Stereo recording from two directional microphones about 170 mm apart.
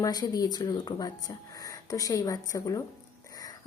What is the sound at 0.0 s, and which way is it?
A woman's voice, 20° left (ahead or behind).